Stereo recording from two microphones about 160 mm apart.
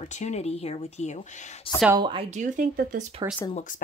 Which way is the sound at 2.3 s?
50° right (ahead or behind).